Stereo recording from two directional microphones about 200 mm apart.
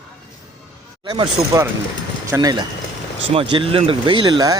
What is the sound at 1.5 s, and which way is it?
Speech, 20° right (ahead or behind).